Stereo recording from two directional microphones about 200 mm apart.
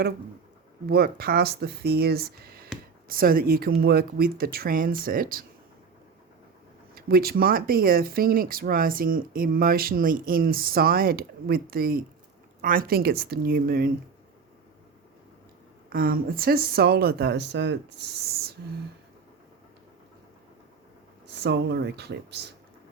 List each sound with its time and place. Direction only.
0.9 s speech: 50° right (ahead or behind)
6.9 s speech: 50° right (ahead or behind)
15.9 s speech: 45° right (ahead or behind)
21.2 s speech: 55° right (ahead or behind)